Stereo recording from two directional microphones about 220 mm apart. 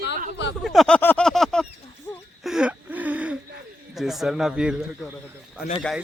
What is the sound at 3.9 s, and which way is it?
Speech, centre (ahead or behind).